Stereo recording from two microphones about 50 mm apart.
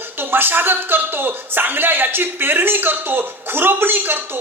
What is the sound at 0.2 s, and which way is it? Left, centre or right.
Speech, right.